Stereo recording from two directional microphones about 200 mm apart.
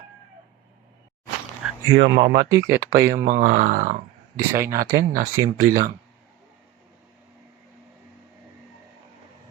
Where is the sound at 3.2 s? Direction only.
40° right (ahead or behind).